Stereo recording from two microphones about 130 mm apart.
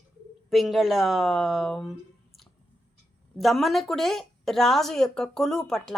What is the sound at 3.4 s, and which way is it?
A woman's voice, centre (ahead or behind).